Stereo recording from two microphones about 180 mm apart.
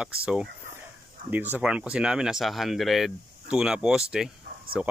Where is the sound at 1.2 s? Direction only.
50° right (ahead or behind).